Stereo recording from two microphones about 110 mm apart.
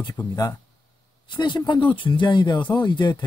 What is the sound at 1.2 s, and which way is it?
A man's voice, 45° left (ahead or behind).